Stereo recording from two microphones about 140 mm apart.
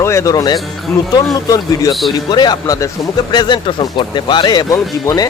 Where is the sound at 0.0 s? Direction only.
20° left (ahead or behind).